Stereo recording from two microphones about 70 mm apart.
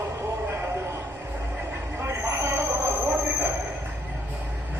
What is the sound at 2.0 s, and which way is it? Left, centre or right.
Vehicle, right.